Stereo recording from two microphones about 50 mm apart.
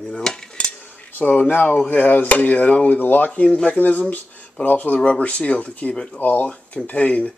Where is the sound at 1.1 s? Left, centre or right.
Left.